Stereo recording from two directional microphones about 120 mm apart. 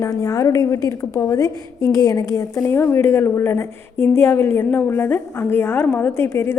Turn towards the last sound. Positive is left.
turn(degrees=20)  # may be behind; listen again after turning